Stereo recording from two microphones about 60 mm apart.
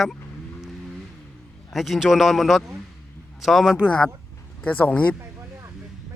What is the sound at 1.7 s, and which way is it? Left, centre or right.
A man's voice, centre.